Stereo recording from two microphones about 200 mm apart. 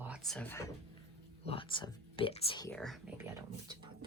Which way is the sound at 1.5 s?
25° left (ahead or behind).